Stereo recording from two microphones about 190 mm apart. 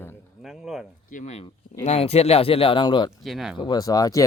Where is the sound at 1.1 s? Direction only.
35° left (ahead or behind).